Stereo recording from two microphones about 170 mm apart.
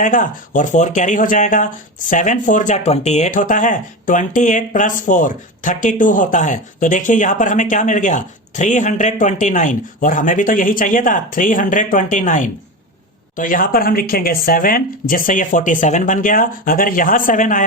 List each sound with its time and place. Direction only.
0.0 s speech: 50° left (ahead or behind)